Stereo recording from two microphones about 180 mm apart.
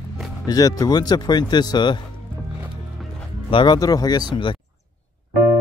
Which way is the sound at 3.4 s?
25° left (ahead or behind).